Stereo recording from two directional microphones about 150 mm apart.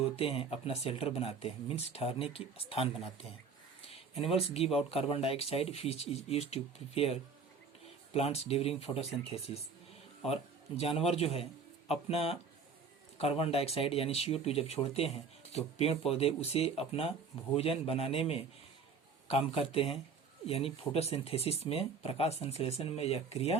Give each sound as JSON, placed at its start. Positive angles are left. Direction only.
{"t": 0.2, "sound": "speech", "side_deg": 40}